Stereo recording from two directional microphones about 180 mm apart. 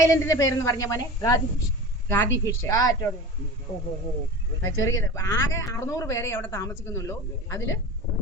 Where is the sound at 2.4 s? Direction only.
20° left (ahead or behind).